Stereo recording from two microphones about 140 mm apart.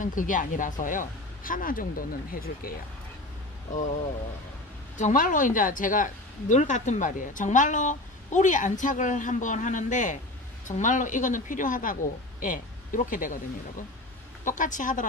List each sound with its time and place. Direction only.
0.0 s speech: 70° left (ahead or behind); by 2.7 s 90° left
4.9 s speech: 70° left (ahead or behind)
14.4 s speech: 65° left (ahead or behind)